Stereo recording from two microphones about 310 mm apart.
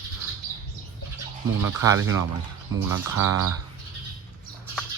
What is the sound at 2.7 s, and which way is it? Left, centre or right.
Speech, right.